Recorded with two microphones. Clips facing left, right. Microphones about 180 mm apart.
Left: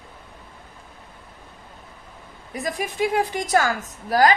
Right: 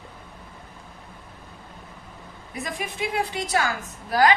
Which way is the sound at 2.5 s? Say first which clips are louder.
Left 4 dB; 40° left (ahead or behind).